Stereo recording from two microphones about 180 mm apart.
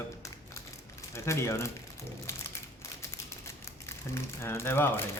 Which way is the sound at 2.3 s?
15° left (ahead or behind).